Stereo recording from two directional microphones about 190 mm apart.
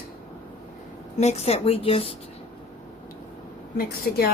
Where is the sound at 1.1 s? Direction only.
35° left (ahead or behind).